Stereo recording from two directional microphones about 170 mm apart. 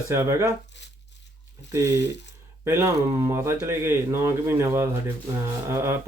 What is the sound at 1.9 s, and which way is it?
Speech, 90° left.